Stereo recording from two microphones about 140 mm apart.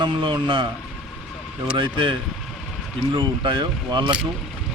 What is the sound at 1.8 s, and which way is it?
Speech, 35° right (ahead or behind).